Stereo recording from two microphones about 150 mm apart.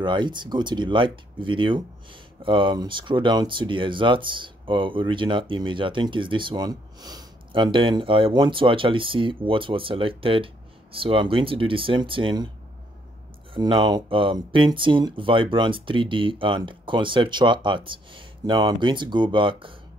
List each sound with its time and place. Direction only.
0.0 s speech: 30° right (ahead or behind)
13.5 s speech: 30° right (ahead or behind)